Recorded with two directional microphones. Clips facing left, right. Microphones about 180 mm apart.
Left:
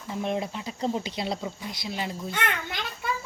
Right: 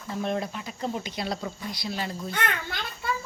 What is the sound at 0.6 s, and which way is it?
Speech, 30° left (ahead or behind).